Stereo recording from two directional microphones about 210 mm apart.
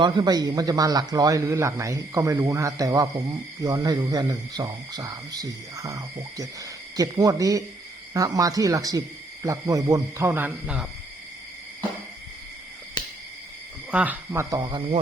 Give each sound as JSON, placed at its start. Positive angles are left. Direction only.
{"t": 0.0, "sound": "a man's voice", "side_deg": -20}
{"t": 13.9, "sound": "a man's voice", "side_deg": -5}